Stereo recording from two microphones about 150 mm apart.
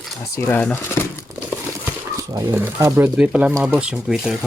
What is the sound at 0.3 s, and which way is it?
Speech, 10° left (ahead or behind).